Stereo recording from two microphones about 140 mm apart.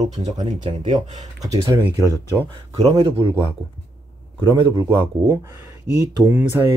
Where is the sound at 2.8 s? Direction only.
45° right (ahead or behind).